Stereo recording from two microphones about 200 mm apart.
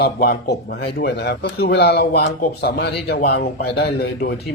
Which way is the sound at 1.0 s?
55° left (ahead or behind).